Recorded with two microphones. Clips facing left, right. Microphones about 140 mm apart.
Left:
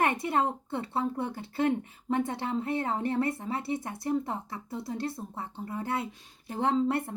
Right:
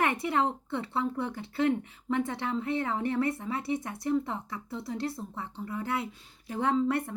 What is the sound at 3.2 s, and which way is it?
Speech, 25° left (ahead or behind).